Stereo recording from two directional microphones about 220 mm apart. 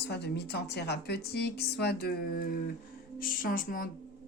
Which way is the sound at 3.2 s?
40° left (ahead or behind).